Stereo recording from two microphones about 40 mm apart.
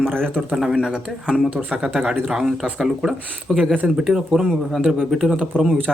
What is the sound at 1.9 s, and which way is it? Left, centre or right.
Speech, centre.